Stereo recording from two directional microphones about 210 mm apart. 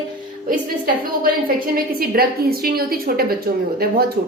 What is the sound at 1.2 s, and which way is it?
A woman's voice, 45° right (ahead or behind).